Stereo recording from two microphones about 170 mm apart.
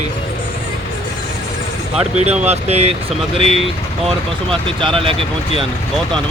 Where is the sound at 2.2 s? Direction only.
40° right (ahead or behind).